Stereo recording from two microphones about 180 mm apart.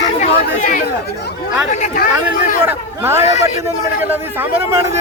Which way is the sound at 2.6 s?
15° right (ahead or behind).